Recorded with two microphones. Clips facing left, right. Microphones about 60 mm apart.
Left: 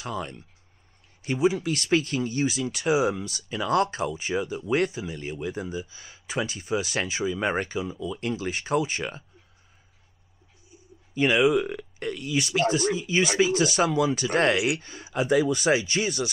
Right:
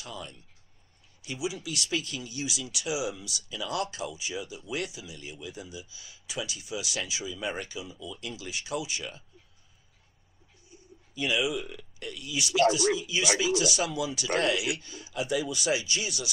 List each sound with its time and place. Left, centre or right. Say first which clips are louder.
0.0 s speech: left 9 dB; left
11.1 s speech: left 8 dB; left